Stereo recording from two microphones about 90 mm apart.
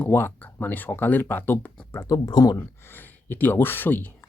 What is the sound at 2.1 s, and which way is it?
Speech, 45° left (ahead or behind).